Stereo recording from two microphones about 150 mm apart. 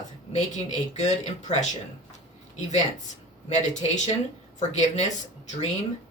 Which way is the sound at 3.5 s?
50° left (ahead or behind).